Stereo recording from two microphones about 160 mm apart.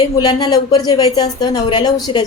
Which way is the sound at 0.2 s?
25° left (ahead or behind).